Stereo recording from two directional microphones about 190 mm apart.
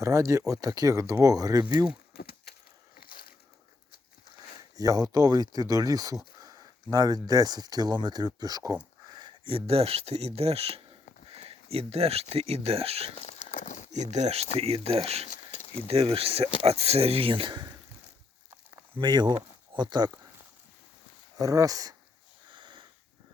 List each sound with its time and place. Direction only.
0.0 s speech: 15° right (ahead or behind)
2.1 s a sound: 55° left (ahead or behind)
3.0 s crushing: 50° left (ahead or behind)
4.8 s speech: 20° right (ahead or behind)
11.3 s a sound: 30° right (ahead or behind)
12.3 s speech: 30° right (ahead or behind)
13.1 s a sound: 40° left (ahead or behind)
13.9 s speech: 35° right (ahead or behind)
15.3 s a sound: 35° left (ahead or behind)
15.9 s speech: 30° right (ahead or behind)
18.9 s speech: 25° right (ahead or behind)
21.3 s speech: 20° right (ahead or behind)
22.5 s sniff: 25° right (ahead or behind)